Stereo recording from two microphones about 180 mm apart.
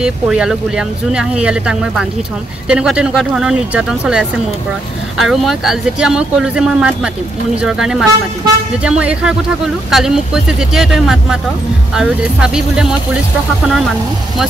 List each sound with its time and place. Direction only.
0.0 s speech: 5° right (ahead or behind)